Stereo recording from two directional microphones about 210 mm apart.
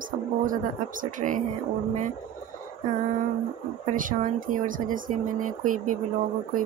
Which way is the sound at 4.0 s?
40° right (ahead or behind).